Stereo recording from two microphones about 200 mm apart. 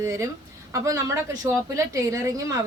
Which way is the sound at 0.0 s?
15° right (ahead or behind).